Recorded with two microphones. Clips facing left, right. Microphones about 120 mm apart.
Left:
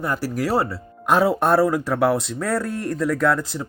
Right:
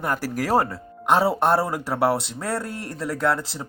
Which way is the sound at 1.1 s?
30° right (ahead or behind).